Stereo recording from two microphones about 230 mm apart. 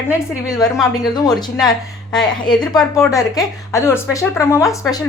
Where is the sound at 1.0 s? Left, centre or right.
Centre.